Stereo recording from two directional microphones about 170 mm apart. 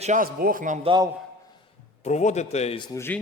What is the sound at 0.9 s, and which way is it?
Speech, 25° right (ahead or behind).